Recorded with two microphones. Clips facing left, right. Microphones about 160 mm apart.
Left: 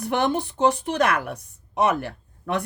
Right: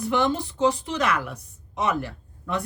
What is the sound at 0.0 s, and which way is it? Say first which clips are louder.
Speech: left 1 dB; 60° left (ahead or behind).